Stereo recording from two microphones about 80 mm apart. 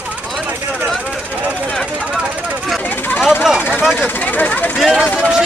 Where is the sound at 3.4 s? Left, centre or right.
Centre.